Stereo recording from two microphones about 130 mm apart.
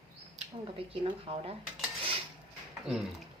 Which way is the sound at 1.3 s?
45° right (ahead or behind).